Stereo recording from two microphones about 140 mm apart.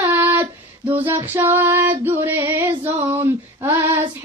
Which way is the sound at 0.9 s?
15° right (ahead or behind).